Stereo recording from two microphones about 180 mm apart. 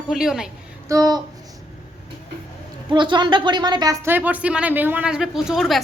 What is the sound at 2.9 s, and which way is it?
Speech, 25° right (ahead or behind).